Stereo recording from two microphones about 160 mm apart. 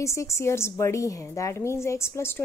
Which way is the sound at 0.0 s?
20° left (ahead or behind).